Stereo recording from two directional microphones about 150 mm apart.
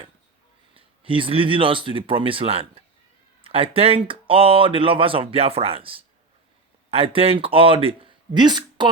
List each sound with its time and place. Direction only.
0.7 s speech: 35° right (ahead or behind)